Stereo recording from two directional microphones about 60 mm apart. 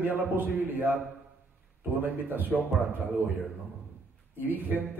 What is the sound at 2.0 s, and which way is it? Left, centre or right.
Speech, right.